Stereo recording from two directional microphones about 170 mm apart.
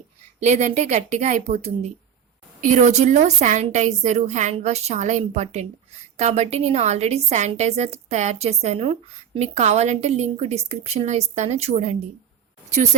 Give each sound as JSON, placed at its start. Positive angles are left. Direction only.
{"t": 0.4, "sound": "a woman's voice", "side_deg": -40}